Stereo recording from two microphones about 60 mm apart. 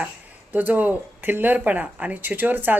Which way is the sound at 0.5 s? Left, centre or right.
Right.